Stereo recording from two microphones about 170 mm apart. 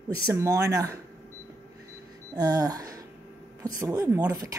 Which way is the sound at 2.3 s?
20° right (ahead or behind).